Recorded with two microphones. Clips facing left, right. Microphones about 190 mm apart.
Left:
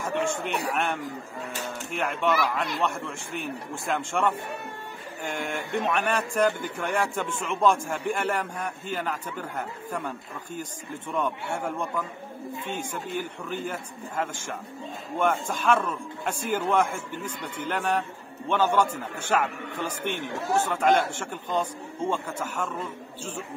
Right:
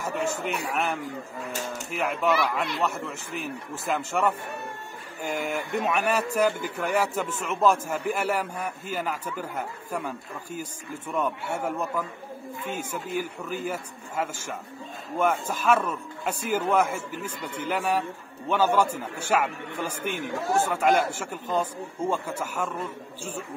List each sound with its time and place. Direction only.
0.0 s a man's voice: 5° right (ahead or behind)